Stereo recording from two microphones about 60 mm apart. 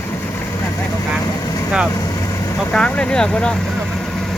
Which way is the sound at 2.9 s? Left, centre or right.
Centre.